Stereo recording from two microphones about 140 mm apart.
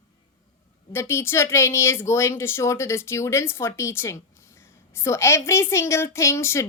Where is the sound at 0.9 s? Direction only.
20° left (ahead or behind).